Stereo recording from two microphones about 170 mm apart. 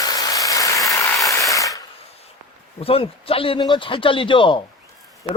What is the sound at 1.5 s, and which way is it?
Ratchet, 20° left (ahead or behind).